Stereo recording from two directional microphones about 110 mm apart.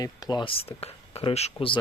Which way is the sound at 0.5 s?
65° left (ahead or behind).